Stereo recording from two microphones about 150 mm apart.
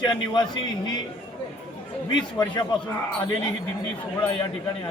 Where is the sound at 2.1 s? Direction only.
30° left (ahead or behind).